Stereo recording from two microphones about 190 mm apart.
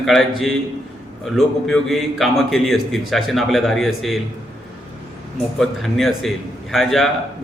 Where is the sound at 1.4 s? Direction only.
Centre (ahead or behind).